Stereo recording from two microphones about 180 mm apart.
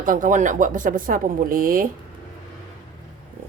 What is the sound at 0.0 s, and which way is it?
Speech, 45° right (ahead or behind).